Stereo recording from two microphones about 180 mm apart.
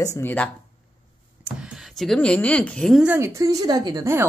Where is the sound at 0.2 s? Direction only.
10° left (ahead or behind).